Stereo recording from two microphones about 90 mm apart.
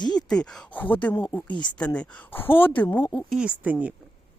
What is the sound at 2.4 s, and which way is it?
Speech, 25° left (ahead or behind).